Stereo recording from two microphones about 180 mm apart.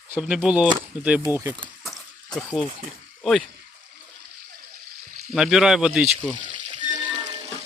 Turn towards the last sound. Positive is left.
turn(degrees=-25)  # may be behind; listen again after turning